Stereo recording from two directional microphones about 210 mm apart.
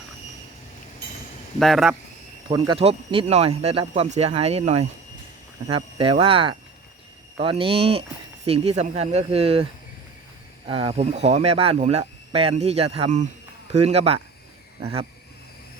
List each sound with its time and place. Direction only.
1.5 s speech: centre (ahead or behind)
2.5 s speech: 25° right (ahead or behind)
10.7 s speech: 25° right (ahead or behind)